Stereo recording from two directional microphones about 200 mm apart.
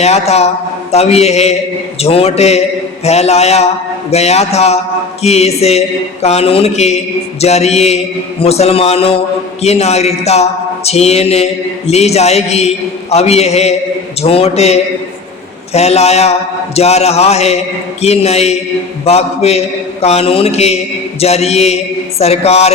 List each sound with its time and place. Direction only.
0.0 s a man's voice: 30° left (ahead or behind)